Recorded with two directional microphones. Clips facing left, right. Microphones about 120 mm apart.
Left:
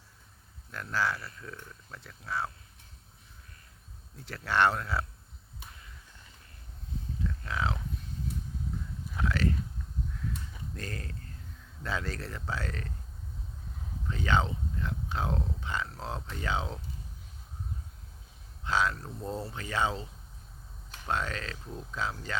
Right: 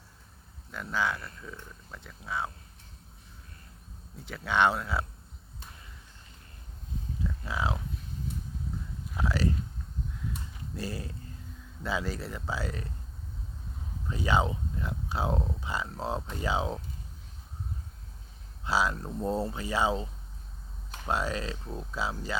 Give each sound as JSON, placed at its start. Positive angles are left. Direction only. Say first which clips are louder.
{"t": 0.7, "sound": "speech", "louder": "right 1 dB", "side_deg": -5}
{"t": 4.3, "sound": "speech", "louder": "right 1 dB", "side_deg": 0}
{"t": 7.3, "sound": "speech", "louder": "right 1 dB", "side_deg": -10}
{"t": 9.1, "sound": "speech", "louder": "right 1 dB", "side_deg": -10}
{"t": 10.8, "sound": "speech", "louder": "right 5 dB", "side_deg": -5}
{"t": 14.1, "sound": "speech", "louder": "right 2 dB", "side_deg": -10}
{"t": 18.6, "sound": "speech", "louder": "right 1 dB", "side_deg": -10}
{"t": 21.1, "sound": "speech", "louder": "right 2 dB", "side_deg": -10}